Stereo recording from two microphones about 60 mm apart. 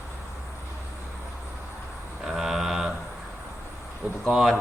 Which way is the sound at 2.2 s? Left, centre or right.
Centre.